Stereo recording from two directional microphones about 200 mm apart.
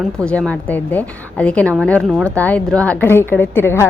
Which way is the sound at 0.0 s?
5° left (ahead or behind).